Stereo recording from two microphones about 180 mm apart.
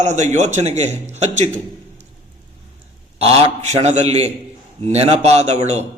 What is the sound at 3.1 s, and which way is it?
A man's voice, 35° right (ahead or behind).